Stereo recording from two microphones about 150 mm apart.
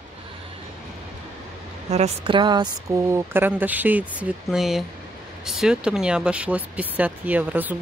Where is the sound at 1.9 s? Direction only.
45° right (ahead or behind).